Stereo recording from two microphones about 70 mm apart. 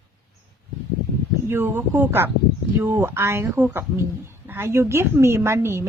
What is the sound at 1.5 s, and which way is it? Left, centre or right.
Speech, right.